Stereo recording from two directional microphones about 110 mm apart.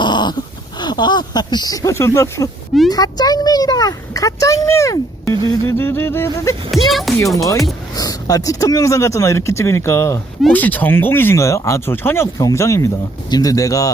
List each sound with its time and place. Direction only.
0.0 s dog: 40° left (ahead or behind)
0.8 s speech: 40° left (ahead or behind); by 6.6 s 25° left (ahead or behind)
6.7 s speech: centre (ahead or behind)
7.4 s speech: 30° left (ahead or behind)